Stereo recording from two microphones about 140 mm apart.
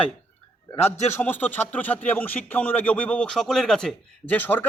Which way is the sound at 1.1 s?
15° left (ahead or behind).